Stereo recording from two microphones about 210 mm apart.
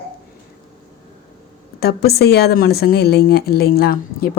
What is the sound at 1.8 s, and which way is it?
Speech, 50° left (ahead or behind).